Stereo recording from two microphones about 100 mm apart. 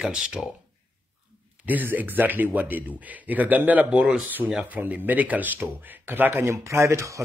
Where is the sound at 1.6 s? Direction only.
15° right (ahead or behind).